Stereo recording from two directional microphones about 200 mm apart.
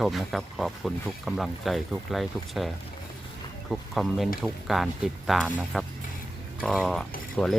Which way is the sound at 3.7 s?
Centre (ahead or behind).